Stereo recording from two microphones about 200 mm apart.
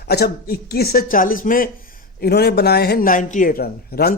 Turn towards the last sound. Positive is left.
turn(degrees=50)  # may be behind; listen again after turning